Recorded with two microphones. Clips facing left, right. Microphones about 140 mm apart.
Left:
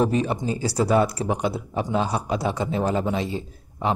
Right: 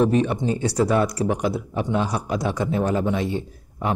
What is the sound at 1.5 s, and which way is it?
Speech, 25° left (ahead or behind).